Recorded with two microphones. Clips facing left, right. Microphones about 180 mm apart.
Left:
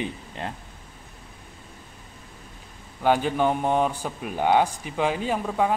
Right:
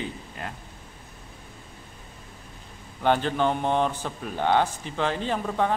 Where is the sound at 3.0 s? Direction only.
10° left (ahead or behind).